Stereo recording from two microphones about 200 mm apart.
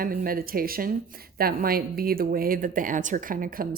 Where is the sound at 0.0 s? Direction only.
45° right (ahead or behind).